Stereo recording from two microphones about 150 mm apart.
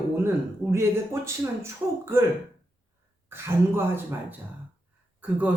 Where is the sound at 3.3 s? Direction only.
15° right (ahead or behind).